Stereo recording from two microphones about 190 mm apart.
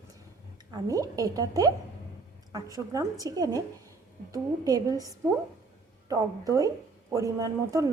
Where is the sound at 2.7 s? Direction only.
20° right (ahead or behind).